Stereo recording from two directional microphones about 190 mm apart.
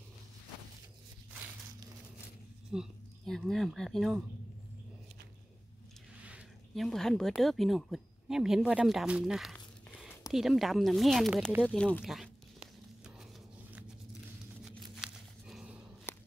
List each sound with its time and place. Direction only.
2.7 s speech: centre (ahead or behind)
6.2 s speech: 5° right (ahead or behind)
10.3 s a sound: centre (ahead or behind)
16.1 s walk: 10° left (ahead or behind)